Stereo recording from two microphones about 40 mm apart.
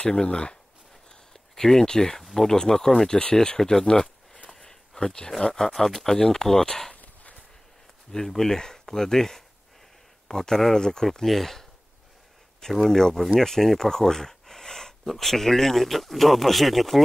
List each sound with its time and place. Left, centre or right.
0.0 s speech: left
1.3 s speech: centre
4.5 s a sound: centre
5.4 s speech: centre
8.1 s speech: centre
12.8 s speech: centre